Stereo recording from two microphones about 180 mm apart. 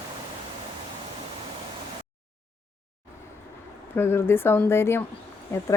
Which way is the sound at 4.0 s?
10° left (ahead or behind).